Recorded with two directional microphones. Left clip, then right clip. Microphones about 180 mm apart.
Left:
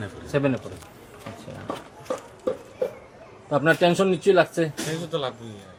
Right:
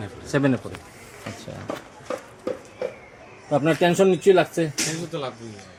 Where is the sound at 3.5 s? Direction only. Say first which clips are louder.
Even; 50° right (ahead or behind).